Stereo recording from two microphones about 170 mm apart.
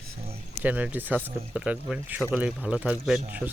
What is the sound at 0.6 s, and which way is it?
Speech, 10° right (ahead or behind).